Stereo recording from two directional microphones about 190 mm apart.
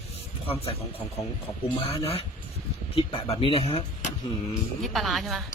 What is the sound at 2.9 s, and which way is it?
Speech, 30° left (ahead or behind).